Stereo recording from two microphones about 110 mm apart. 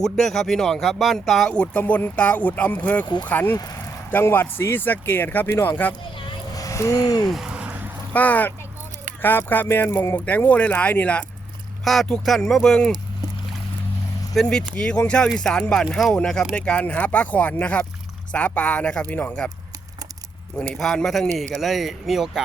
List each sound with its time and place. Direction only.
0.0 s speech: 5° left (ahead or behind); by 5.9 s 20° left (ahead or behind)
6.6 s speech: 30° left (ahead or behind)
7.3 s a sound: 5° right (ahead or behind)
8.1 s speech: 15° left (ahead or behind)
14.3 s speech: 5° left (ahead or behind)
20.6 s speech: 5° left (ahead or behind)